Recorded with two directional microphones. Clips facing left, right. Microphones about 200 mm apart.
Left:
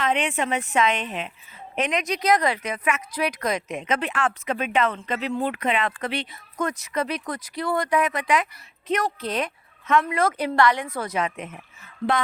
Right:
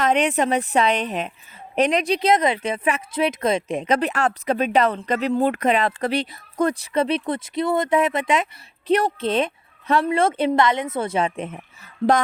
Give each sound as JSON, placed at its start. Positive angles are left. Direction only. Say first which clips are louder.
{"t": 0.0, "sound": "a woman's voice", "louder": "right 5 dB", "side_deg": -40}